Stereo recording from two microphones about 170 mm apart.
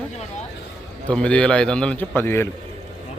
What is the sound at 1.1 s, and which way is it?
Speech, 5° left (ahead or behind).